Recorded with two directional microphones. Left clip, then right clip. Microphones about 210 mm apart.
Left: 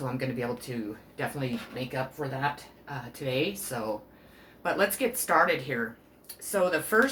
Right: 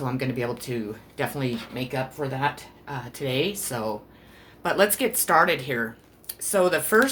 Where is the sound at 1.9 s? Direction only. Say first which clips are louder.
Right 4 dB; 45° right (ahead or behind).